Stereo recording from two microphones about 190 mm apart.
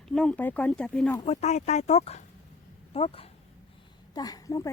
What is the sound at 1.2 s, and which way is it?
Speech, 35° left (ahead or behind).